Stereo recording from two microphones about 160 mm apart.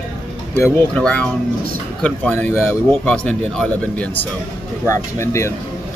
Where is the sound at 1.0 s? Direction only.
5° left (ahead or behind).